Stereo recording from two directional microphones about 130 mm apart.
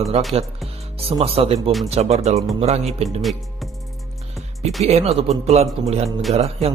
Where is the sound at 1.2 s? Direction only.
50° right (ahead or behind).